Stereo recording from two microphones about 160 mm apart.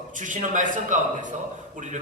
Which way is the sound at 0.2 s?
55° right (ahead or behind).